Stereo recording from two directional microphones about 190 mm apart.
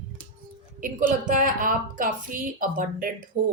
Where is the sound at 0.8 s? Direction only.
45° right (ahead or behind).